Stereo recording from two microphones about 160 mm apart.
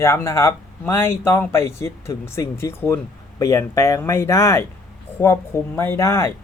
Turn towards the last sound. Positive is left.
turn(degrees=15)  # may be behind; listen again after turning